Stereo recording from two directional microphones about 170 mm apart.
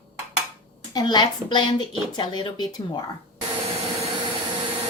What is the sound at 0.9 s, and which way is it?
Speech, 25° left (ahead or behind).